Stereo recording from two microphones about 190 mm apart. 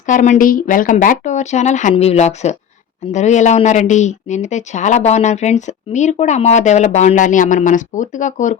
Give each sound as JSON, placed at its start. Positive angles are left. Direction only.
{"t": 0.0, "sound": "a woman's voice", "side_deg": 40}